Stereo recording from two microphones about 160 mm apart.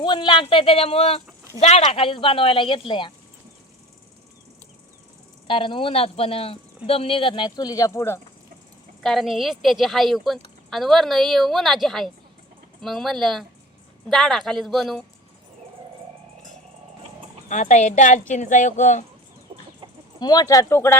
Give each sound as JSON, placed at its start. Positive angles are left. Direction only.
{"t": 0.0, "sound": "a woman's voice", "side_deg": 30}
{"t": 5.5, "sound": "a woman's voice", "side_deg": 30}
{"t": 9.0, "sound": "a woman's voice", "side_deg": 0}
{"t": 17.5, "sound": "a woman's voice", "side_deg": 50}
{"t": 20.1, "sound": "speech", "side_deg": 25}